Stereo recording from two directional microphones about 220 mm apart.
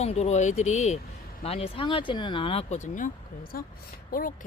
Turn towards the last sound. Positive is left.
turn(degrees=40)  # may be behind; listen again after turning